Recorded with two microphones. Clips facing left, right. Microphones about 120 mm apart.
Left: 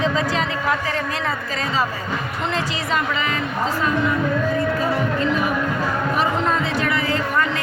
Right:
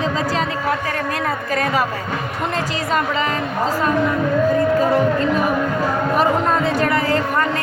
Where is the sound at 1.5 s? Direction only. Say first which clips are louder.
Right 5 dB; 55° right (ahead or behind).